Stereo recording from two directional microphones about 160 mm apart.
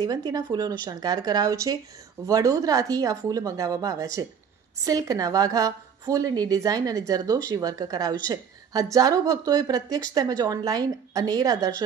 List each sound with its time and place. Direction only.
0.0 s a woman's voice: 25° right (ahead or behind)